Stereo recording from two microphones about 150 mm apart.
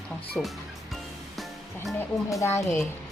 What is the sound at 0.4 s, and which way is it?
Speech, 15° left (ahead or behind).